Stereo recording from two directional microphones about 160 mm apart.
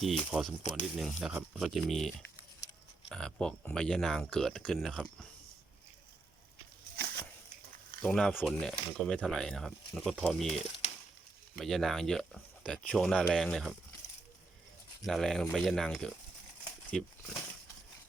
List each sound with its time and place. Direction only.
0.0 s speech: centre (ahead or behind)
6.9 s a sound: 85° right
8.0 s speech: 5° left (ahead or behind)
15.0 s speech: centre (ahead or behind)